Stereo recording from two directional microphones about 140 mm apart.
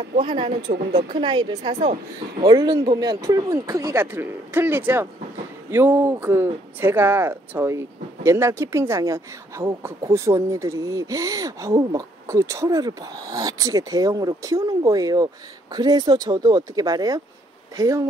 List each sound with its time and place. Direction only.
0.1 s a woman's voice: 40° right (ahead or behind)